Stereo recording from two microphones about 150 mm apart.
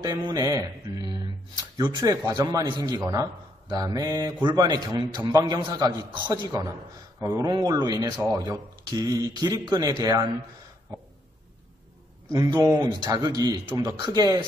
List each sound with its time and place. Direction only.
0.0 s speech: 30° right (ahead or behind)
12.3 s speech: 30° right (ahead or behind)